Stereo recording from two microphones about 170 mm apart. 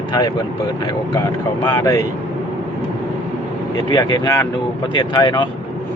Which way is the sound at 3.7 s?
25° left (ahead or behind).